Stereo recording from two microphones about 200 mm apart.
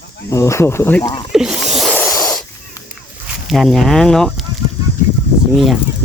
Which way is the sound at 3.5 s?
Centre (ahead or behind).